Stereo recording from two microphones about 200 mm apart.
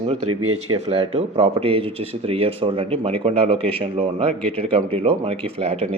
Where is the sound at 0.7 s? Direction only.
30° right (ahead or behind).